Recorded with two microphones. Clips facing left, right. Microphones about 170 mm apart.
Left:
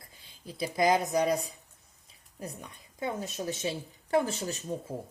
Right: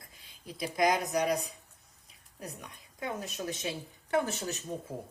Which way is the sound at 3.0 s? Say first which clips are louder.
Left 3 dB; 25° left (ahead or behind).